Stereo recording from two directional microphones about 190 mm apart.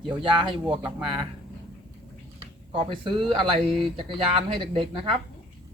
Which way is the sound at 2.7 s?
25° right (ahead or behind).